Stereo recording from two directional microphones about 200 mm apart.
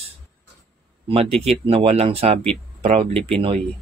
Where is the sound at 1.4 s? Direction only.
30° right (ahead or behind).